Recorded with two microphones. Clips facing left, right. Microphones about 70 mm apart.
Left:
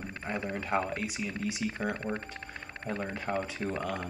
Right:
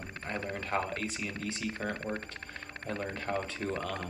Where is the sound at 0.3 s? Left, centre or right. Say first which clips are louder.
Left 2 dB; centre.